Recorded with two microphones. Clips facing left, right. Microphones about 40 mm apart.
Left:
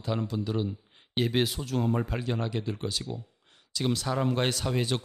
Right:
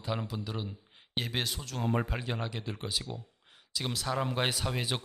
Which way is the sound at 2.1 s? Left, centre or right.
Centre.